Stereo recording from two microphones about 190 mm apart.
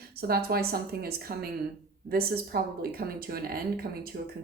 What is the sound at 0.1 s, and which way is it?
Speech, 55° right (ahead or behind).